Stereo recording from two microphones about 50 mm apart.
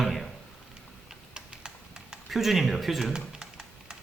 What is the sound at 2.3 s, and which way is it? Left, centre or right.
Speech, centre.